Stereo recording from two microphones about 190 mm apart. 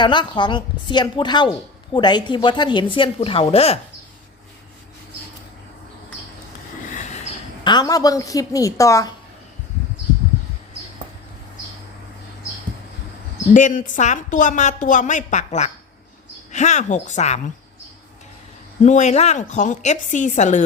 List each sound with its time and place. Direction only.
0.0 s speech: 25° left (ahead or behind)
6.9 s vehicle: 40° left (ahead or behind)
7.6 s a woman's voice: 20° left (ahead or behind)
13.5 s a woman's voice: 40° left (ahead or behind)
18.8 s a woman's voice: 40° left (ahead or behind)